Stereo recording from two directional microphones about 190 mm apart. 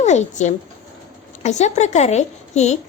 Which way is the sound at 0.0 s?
40° left (ahead or behind).